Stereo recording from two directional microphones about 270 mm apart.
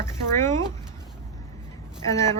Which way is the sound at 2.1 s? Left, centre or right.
Centre.